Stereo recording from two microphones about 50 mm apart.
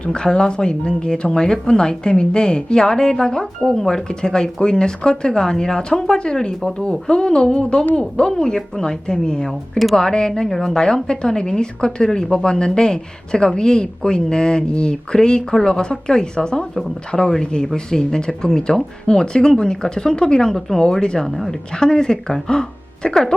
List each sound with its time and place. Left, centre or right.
0.0 s a woman's voice: centre
8.3 s a woman's voice: centre